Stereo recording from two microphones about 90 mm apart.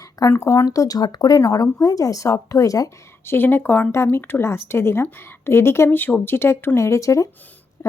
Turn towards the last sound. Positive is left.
turn(degrees=35)  # may be behind; listen again after turning